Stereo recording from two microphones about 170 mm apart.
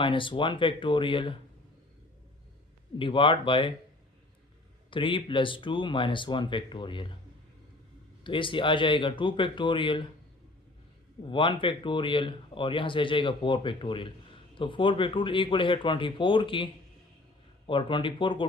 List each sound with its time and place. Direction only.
0.0 s speech: 30° left (ahead or behind)
3.0 s speech: 30° left (ahead or behind)
4.9 s speech: 30° left (ahead or behind)
8.2 s speech: 30° left (ahead or behind)
11.3 s speech: 30° left (ahead or behind)
17.7 s speech: 30° left (ahead or behind)